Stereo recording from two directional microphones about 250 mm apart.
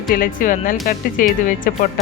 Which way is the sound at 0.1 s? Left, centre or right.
Left.